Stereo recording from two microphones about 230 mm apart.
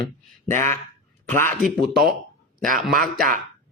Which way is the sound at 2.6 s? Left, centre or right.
Right.